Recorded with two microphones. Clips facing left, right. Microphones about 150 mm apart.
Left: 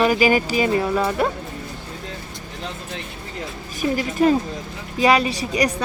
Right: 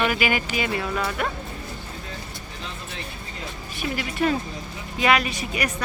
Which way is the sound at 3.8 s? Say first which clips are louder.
Left 6 dB; 40° left (ahead or behind).